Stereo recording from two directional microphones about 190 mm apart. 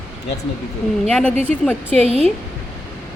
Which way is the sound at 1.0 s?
5° left (ahead or behind).